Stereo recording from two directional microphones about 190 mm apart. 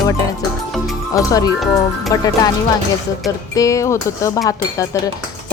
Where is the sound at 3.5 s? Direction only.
15° left (ahead or behind).